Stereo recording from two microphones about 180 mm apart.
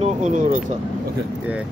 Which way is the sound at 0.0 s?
40° right (ahead or behind).